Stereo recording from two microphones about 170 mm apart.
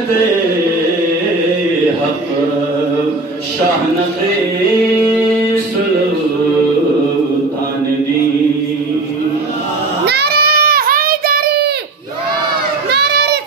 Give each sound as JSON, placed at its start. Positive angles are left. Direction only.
{"t": 10.0, "sound": "child singing", "side_deg": -75}
{"t": 12.9, "sound": "children playing", "side_deg": -75}